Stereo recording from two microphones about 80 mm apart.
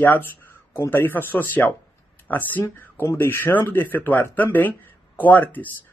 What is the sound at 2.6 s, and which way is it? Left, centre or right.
Speech, left.